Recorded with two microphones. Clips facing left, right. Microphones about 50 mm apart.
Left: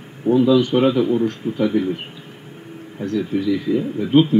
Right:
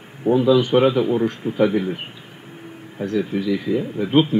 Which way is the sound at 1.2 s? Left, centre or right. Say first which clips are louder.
Right 1 dB; centre.